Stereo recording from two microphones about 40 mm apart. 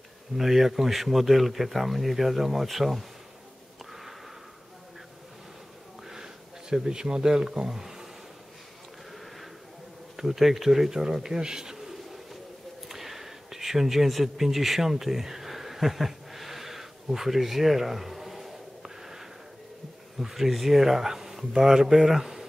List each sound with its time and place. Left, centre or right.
0.4 s speech: centre
6.0 s a sound: centre
9.1 s sheep: centre
10.1 s speech: centre
12.8 s a sound: centre
20.2 s speech: centre